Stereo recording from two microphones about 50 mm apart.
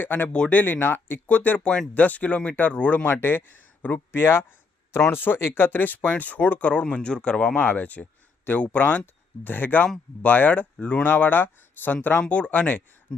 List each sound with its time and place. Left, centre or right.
0.0 s speech: left
1.3 s speech: left
3.2 s speech: left
6.8 s speech: centre; by 11.9 s left
12.3 s speech: left
13.1 s a sound: centre